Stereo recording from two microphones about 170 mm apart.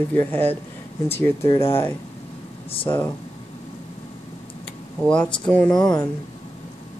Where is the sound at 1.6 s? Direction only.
15° left (ahead or behind).